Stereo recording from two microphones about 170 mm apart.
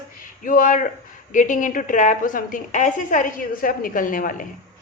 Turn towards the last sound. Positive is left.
turn(degrees=55)  # may be behind; listen again after turning